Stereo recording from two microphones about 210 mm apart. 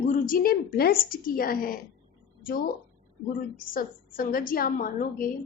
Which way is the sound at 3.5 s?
40° left (ahead or behind).